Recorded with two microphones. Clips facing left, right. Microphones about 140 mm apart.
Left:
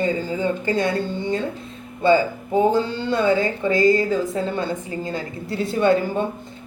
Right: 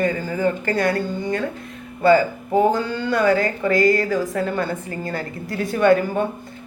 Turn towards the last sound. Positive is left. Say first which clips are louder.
# right 2 dB
turn(degrees=25)  # may be behind; listen again after turning